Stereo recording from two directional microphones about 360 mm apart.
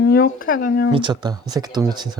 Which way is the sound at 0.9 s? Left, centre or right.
Centre.